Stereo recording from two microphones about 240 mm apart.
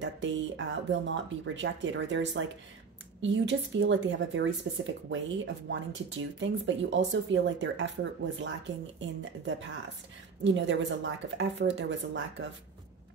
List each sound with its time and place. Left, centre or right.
0.0 s speech: right